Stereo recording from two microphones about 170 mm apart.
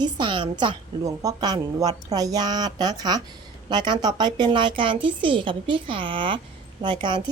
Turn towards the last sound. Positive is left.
turn(degrees=-25)  # may be behind; listen again after turning